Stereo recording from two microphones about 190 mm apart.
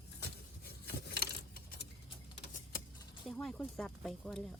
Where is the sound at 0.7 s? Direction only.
55° left (ahead or behind).